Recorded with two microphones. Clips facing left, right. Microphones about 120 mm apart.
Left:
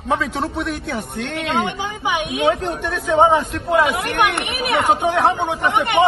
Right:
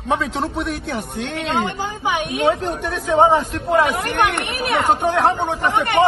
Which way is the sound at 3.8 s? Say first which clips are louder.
Even; 15° left (ahead or behind).